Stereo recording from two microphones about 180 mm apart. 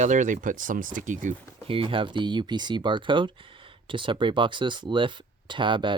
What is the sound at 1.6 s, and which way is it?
Speech, 30° right (ahead or behind).